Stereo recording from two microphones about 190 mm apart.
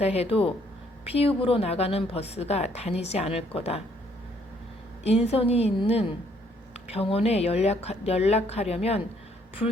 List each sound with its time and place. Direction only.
0.0 s a woman's voice: 35° left (ahead or behind)
5.0 s a woman's voice: 35° left (ahead or behind)